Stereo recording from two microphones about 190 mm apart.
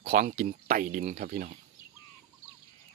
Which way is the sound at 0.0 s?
45° right (ahead or behind).